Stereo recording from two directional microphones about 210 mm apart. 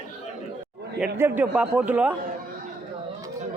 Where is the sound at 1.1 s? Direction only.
10° right (ahead or behind).